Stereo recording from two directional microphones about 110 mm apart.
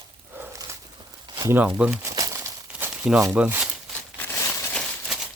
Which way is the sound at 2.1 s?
30° right (ahead or behind).